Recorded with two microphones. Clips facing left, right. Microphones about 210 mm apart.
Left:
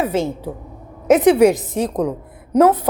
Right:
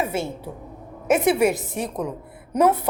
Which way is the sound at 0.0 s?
90° left.